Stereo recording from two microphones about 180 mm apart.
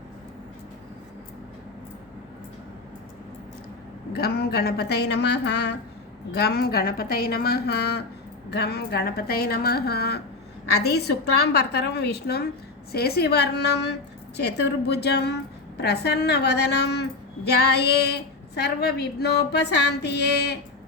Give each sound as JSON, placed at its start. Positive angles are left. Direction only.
{"t": 4.1, "sound": "a woman's voice", "side_deg": 60}